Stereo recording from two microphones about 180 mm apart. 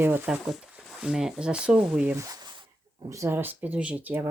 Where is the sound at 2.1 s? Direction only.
15° right (ahead or behind).